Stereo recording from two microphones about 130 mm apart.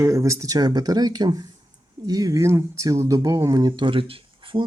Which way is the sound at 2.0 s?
30° right (ahead or behind).